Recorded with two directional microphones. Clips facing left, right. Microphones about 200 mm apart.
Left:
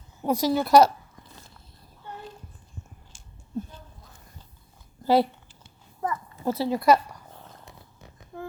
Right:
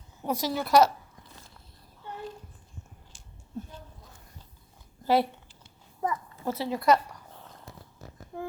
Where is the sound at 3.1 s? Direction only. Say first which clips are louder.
Left 1 dB; 50° left (ahead or behind).